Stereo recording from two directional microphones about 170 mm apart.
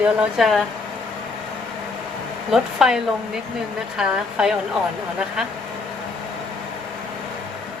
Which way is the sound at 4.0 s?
5° right (ahead or behind).